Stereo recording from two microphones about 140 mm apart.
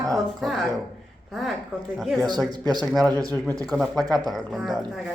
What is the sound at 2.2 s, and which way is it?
Speech, 30° right (ahead or behind).